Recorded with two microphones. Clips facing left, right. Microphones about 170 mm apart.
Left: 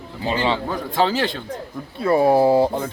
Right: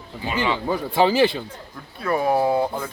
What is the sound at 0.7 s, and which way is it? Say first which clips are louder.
Speech: right 2 dB; 10° right (ahead or behind).